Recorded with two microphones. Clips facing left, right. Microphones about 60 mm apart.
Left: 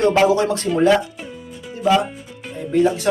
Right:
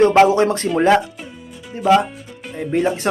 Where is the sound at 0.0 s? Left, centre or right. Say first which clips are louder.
Right 3 dB; right.